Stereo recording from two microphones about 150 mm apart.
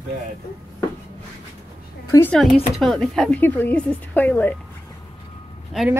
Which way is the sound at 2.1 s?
15° left (ahead or behind).